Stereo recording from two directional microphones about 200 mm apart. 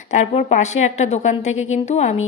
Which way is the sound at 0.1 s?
35° left (ahead or behind).